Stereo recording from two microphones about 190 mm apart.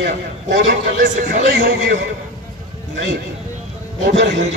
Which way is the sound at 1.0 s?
50° right (ahead or behind).